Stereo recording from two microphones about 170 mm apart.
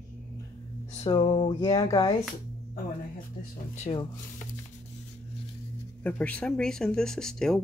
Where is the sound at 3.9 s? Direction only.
35° left (ahead or behind).